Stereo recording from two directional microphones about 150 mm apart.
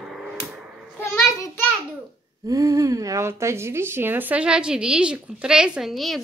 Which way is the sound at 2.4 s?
20° right (ahead or behind).